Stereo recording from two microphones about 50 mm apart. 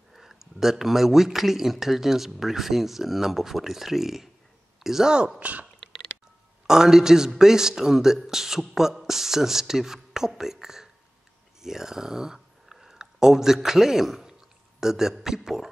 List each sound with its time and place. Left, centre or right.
0.1 s a man's voice: centre
5.4 s speech: right
6.7 s a man's voice: centre